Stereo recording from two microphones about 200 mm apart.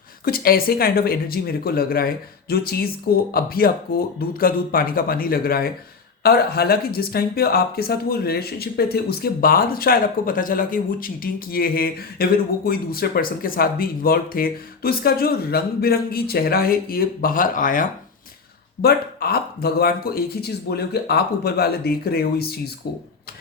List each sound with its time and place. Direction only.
0.3 s speech: 45° left (ahead or behind)